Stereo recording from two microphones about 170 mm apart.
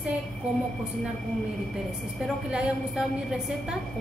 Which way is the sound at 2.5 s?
5° right (ahead or behind).